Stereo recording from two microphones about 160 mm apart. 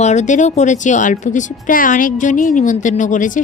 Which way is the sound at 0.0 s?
45° left (ahead or behind).